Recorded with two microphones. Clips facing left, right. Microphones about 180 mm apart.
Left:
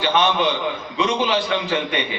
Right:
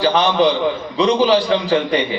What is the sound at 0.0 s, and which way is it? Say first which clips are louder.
A man's voice: right 5 dB; 35° right (ahead or behind).